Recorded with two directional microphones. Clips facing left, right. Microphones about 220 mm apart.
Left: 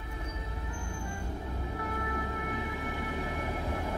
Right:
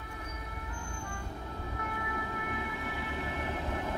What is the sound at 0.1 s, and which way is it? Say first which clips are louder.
Music: left 4 dB; 25° left (ahead or behind).